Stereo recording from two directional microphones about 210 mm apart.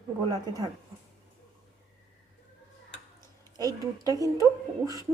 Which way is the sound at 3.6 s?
15° right (ahead or behind).